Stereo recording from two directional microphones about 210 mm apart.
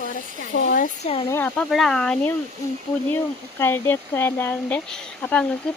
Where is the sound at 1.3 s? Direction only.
10° left (ahead or behind).